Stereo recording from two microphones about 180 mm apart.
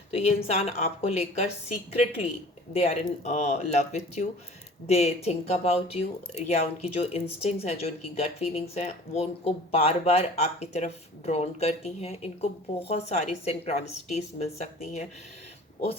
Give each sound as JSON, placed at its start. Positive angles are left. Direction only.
{"t": 0.1, "sound": "speech", "side_deg": 35}